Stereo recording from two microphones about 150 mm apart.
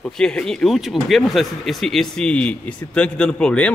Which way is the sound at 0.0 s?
5° left (ahead or behind).